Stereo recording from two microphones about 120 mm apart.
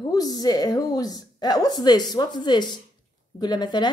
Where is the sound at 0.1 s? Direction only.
30° left (ahead or behind).